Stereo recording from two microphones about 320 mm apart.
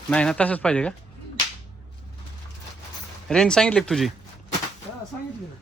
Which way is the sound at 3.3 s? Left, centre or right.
Centre.